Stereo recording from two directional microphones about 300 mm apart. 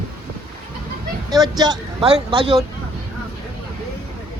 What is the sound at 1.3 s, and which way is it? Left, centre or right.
Speech, centre.